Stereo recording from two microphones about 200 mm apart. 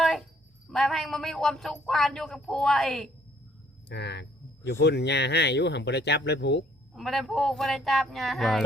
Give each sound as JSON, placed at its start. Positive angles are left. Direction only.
{"t": 0.0, "sound": "music", "side_deg": 0}
{"t": 0.7, "sound": "speech", "side_deg": 0}
{"t": 3.8, "sound": "a sound", "side_deg": 60}
{"t": 4.8, "sound": "speech", "side_deg": 60}
{"t": 6.9, "sound": "speech", "side_deg": 0}